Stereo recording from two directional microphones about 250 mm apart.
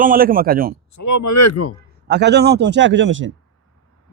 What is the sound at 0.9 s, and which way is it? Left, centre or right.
Speech, left.